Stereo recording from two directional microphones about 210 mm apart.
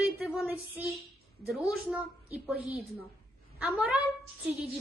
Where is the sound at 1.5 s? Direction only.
5° right (ahead or behind).